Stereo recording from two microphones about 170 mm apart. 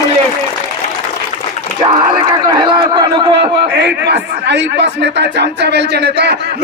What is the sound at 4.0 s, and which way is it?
A man's voice, 90° right.